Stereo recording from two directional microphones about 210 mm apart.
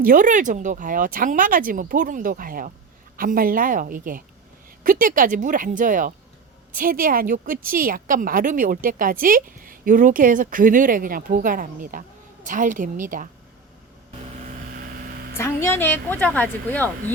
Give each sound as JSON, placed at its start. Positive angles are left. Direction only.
{"t": 0.0, "sound": "a woman's voice", "side_deg": -40}
{"t": 15.4, "sound": "a woman's voice", "side_deg": 10}